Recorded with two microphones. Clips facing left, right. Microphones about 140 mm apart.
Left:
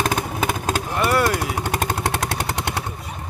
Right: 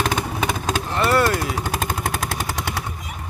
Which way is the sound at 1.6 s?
70° left (ahead or behind).